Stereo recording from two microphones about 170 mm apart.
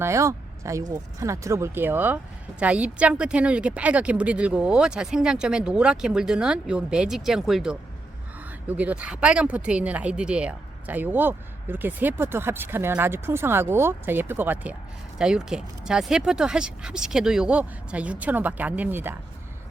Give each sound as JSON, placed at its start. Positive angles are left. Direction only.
{"t": 0.0, "sound": "speech", "side_deg": -15}